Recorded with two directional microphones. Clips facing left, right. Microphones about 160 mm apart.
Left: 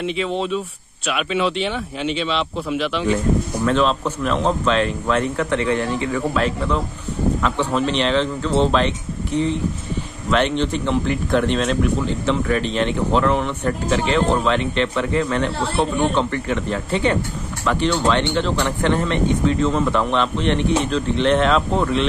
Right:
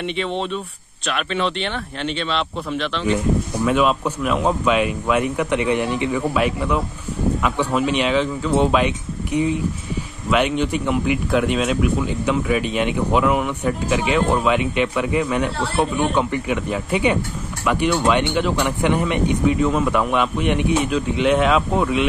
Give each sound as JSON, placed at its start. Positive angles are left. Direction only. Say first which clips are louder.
{"t": 0.0, "sound": "speech", "louder": "left 1 dB", "side_deg": 0}
{"t": 3.6, "sound": "a man's voice", "louder": "right 1 dB", "side_deg": -10}